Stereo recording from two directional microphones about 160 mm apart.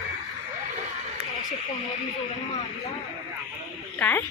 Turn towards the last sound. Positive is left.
turn(degrees=10)  # may be behind; listen again after turning